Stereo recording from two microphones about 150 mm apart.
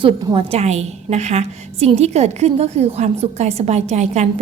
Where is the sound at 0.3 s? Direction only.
45° right (ahead or behind).